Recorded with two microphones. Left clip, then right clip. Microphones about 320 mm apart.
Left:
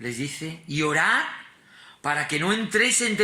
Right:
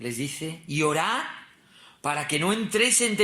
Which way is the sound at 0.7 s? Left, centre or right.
Centre.